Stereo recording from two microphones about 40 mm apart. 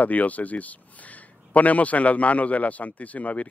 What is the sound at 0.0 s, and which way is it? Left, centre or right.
A man's voice, left.